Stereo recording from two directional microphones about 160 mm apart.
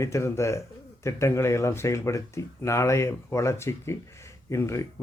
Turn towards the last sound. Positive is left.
turn(degrees=20)  # may be behind; listen again after turning